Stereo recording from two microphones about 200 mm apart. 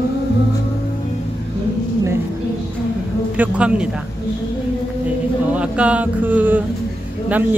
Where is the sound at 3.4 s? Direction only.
5° right (ahead or behind).